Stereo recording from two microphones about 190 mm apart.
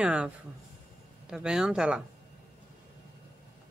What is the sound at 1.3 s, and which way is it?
Speech, 5° right (ahead or behind).